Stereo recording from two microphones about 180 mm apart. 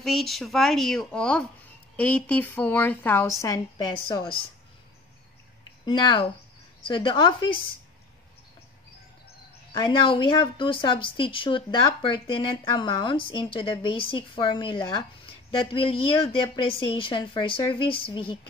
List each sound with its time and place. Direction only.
0.0 s a woman's voice: centre (ahead or behind); by 4.3 s 25° left (ahead or behind)
5.9 s speech: 25° left (ahead or behind)
9.7 s speech: 25° left (ahead or behind)